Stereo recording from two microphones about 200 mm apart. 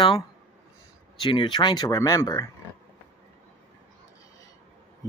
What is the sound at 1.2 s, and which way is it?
Speech, 25° left (ahead or behind).